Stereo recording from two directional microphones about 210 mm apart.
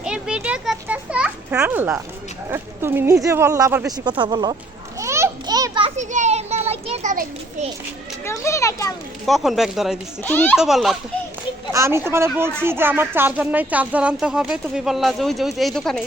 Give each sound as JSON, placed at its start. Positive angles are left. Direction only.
{"t": 0.0, "sound": "children playing", "side_deg": -5}
{"t": 2.5, "sound": "speech", "side_deg": -10}
{"t": 4.9, "sound": "children playing", "side_deg": -15}
{"t": 6.0, "sound": "children playing", "side_deg": -35}
{"t": 8.2, "sound": "a child's voice", "side_deg": 15}
{"t": 9.2, "sound": "speech", "side_deg": 0}
{"t": 10.2, "sound": "a child's voice", "side_deg": 10}
{"t": 10.6, "sound": "speech", "side_deg": 0}
{"t": 11.7, "sound": "speech", "side_deg": -10}